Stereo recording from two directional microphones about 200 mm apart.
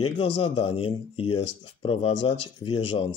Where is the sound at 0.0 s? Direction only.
25° left (ahead or behind).